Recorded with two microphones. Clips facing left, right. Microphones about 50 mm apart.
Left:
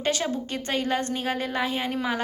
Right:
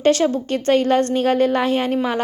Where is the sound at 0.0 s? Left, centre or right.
Right.